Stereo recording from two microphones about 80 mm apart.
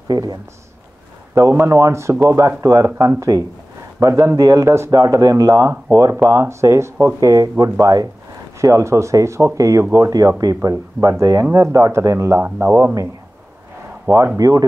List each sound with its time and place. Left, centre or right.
0.1 s speech: right
1.5 s speech: right
3.2 s speech: right
4.1 s speech: right
12.4 s speech: right
14.0 s speech: right